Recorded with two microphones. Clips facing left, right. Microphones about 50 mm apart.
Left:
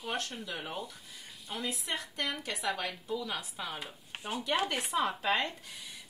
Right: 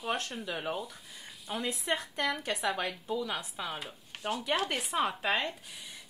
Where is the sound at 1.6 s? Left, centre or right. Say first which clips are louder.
Right 4 dB; right.